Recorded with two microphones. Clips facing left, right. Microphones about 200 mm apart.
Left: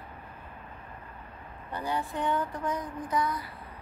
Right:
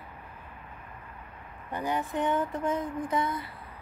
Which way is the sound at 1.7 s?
20° right (ahead or behind).